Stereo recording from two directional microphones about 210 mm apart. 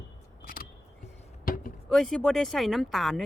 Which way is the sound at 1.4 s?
40° left (ahead or behind).